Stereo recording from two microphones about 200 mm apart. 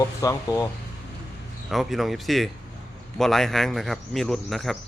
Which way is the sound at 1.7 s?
Centre (ahead or behind).